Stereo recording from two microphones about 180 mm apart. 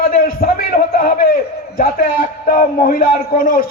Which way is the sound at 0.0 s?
55° left (ahead or behind).